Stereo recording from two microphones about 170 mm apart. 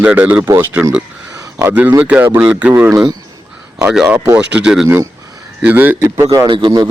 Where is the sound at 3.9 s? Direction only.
5° right (ahead or behind).